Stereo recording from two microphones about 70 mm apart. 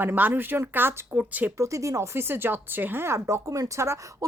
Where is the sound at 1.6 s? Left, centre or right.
Right.